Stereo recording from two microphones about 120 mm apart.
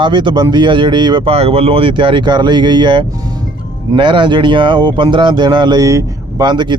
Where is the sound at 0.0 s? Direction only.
40° right (ahead or behind).